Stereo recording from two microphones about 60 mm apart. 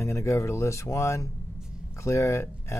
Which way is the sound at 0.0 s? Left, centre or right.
Left.